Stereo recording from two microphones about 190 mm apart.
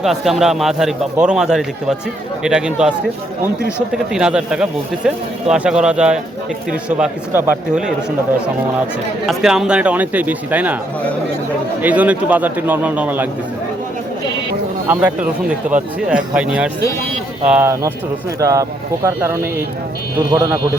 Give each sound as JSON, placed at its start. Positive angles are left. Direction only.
{"t": 0.0, "sound": "speech", "side_deg": 0}
{"t": 9.2, "sound": "speech", "side_deg": 0}
{"t": 11.8, "sound": "speech", "side_deg": -10}
{"t": 14.8, "sound": "speech", "side_deg": -10}